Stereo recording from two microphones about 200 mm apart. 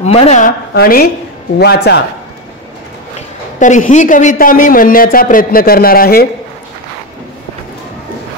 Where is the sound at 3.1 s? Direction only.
40° left (ahead or behind).